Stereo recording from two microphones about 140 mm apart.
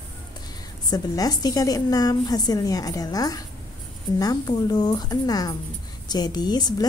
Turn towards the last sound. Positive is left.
turn(degrees=30)  # may be behind; listen again after turning